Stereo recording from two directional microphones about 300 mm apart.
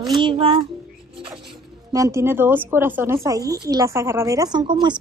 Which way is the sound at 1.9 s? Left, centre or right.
Centre.